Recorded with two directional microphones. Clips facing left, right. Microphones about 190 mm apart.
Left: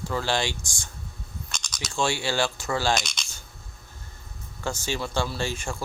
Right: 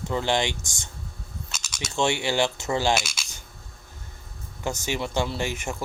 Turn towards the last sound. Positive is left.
turn(degrees=-20)  # may be behind; listen again after turning